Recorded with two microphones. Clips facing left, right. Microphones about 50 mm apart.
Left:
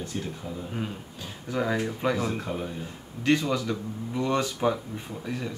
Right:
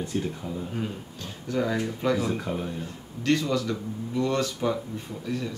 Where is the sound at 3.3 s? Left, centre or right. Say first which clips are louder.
Even; centre.